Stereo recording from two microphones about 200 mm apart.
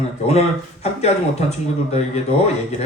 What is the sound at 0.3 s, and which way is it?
Speech, 35° left (ahead or behind).